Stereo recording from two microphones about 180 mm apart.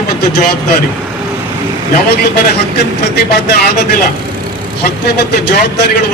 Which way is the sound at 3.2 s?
65° left (ahead or behind).